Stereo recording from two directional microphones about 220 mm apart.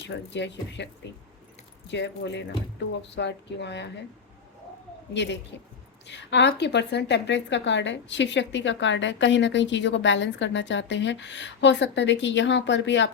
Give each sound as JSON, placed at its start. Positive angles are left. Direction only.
{"t": 0.0, "sound": "speech", "side_deg": 55}
{"t": 1.9, "sound": "speech", "side_deg": 50}
{"t": 5.1, "sound": "a woman's voice", "side_deg": 50}